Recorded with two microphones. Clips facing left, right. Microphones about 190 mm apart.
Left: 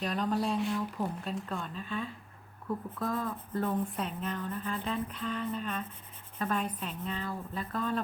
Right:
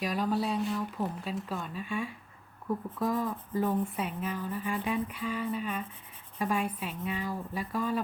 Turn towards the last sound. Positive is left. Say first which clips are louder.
# right 2 dB
turn(degrees=-10)  # may be behind; listen again after turning